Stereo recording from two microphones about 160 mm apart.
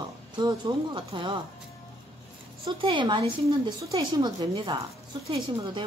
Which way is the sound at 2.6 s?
30° right (ahead or behind).